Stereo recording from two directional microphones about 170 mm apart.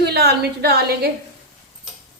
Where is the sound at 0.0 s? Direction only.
70° right (ahead or behind).